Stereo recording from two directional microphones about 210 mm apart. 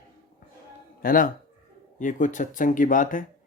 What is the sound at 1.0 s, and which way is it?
Speech, 40° left (ahead or behind).